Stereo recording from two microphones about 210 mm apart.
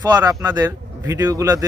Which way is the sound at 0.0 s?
15° right (ahead or behind).